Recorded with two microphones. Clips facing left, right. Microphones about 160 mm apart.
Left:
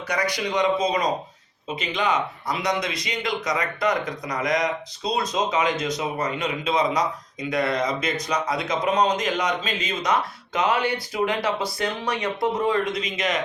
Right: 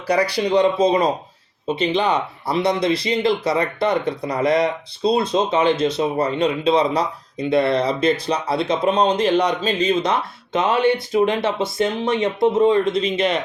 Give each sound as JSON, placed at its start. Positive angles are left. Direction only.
{"t": 0.1, "sound": "speech", "side_deg": -30}